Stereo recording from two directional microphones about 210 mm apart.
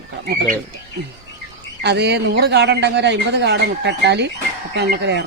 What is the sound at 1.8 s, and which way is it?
Speech, 55° right (ahead or behind).